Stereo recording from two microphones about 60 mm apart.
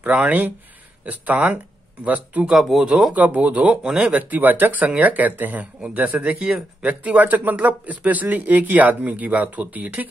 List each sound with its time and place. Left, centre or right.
0.0 s speech: right
2.5 s speech: centre
2.9 s speech: centre